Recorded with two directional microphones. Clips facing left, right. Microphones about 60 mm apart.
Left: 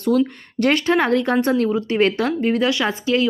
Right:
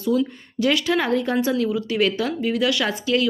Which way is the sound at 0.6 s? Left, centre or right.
Left.